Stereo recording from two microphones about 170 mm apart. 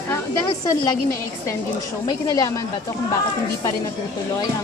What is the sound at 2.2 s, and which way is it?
Speech, 20° left (ahead or behind).